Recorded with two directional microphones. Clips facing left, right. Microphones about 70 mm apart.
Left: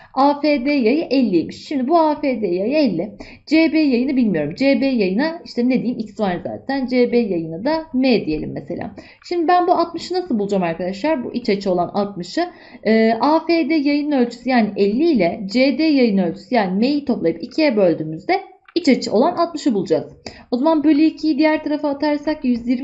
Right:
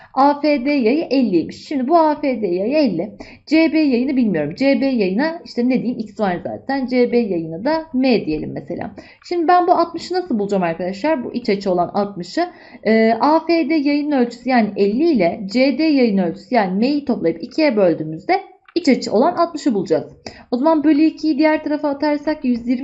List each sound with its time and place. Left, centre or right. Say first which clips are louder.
0.1 s a woman's voice: right 1 dB; right